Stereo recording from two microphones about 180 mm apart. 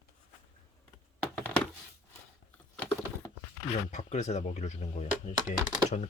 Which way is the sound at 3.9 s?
40° left (ahead or behind).